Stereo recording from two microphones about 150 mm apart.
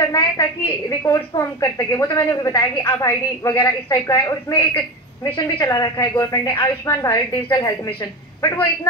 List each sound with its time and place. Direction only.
0.1 s a woman's voice: 25° left (ahead or behind)